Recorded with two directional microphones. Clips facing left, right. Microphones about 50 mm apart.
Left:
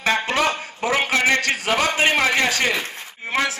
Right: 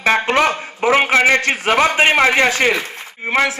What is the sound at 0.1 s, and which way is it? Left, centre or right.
A man's voice, right.